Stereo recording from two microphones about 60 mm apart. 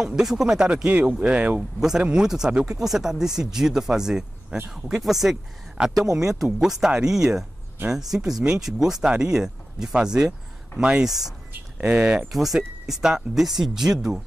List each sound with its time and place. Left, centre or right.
0.0 s speech: centre
1.6 s speech: centre
11.1 s speech: centre
11.5 s a sound: right
12.0 s speech: right
12.3 s speech: centre